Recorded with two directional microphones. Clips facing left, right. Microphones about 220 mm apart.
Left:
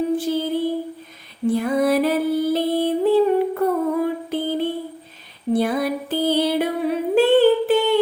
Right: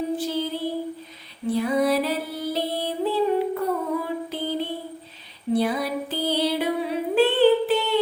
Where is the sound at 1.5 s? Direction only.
50° left (ahead or behind).